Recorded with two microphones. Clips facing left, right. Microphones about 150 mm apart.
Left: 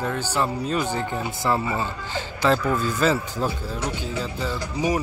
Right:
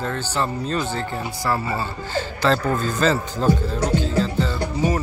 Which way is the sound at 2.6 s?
45° right (ahead or behind).